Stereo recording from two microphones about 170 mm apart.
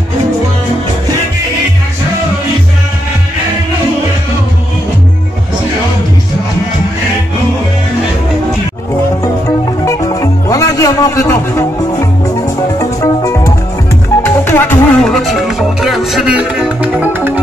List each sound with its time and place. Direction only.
9.8 s music: 20° left (ahead or behind); by 17.3 s 10° right (ahead or behind)